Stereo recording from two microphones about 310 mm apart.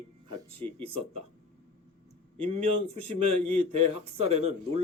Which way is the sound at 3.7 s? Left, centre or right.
Right.